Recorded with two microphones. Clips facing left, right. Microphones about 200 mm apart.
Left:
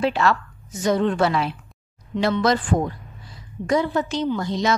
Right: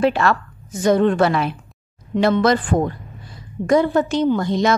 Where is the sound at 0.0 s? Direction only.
55° right (ahead or behind).